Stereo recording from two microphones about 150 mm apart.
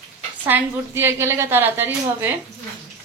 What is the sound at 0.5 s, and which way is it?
A woman's voice, 15° right (ahead or behind).